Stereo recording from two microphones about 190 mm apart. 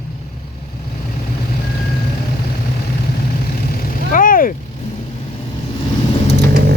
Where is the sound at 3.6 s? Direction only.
50° left (ahead or behind).